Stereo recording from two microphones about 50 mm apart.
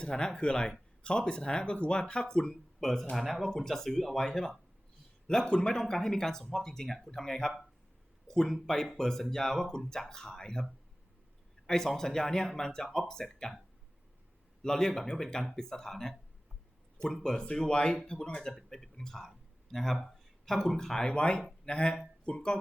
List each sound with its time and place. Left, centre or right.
0.1 s speech: centre
14.6 s speech: centre
17.4 s speech: centre